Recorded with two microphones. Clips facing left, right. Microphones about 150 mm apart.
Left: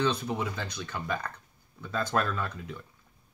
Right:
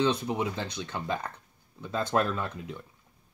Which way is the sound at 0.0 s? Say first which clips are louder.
Right 2 dB; 20° right (ahead or behind).